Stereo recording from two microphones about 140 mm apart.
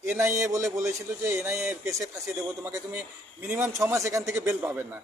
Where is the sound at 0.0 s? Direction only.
20° right (ahead or behind).